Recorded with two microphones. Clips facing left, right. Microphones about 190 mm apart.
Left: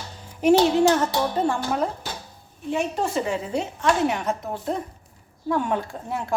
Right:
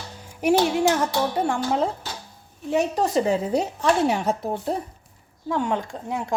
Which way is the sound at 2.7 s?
40° right (ahead or behind).